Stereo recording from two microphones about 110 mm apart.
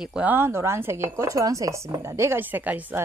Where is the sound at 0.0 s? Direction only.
10° right (ahead or behind).